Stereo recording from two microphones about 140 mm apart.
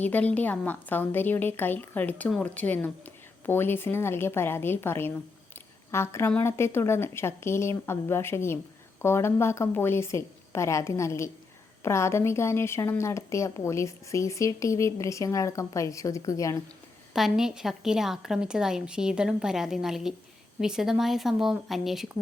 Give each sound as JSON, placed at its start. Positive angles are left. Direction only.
{"t": 0.0, "sound": "a woman's voice", "side_deg": 10}
{"t": 17.2, "sound": "a woman's voice", "side_deg": -5}